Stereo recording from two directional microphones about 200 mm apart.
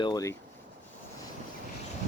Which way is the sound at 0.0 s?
20° left (ahead or behind).